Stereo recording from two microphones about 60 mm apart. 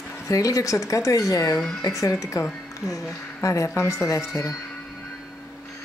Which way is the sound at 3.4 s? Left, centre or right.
Left.